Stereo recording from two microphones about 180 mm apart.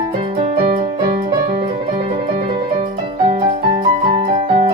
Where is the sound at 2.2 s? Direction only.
35° right (ahead or behind).